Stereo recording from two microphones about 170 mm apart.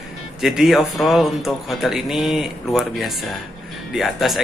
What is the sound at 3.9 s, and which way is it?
Speech, centre (ahead or behind).